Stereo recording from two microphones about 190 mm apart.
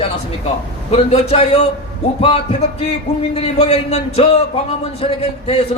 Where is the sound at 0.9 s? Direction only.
35° left (ahead or behind).